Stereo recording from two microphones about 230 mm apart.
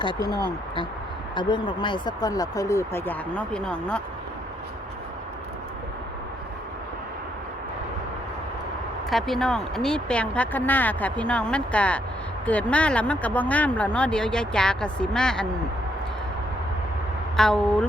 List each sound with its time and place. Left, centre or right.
0.0 s speech: centre
1.4 s speech: centre
9.0 s speech: centre
17.3 s speech: centre